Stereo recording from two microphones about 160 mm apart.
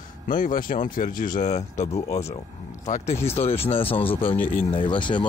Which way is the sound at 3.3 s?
40° left (ahead or behind).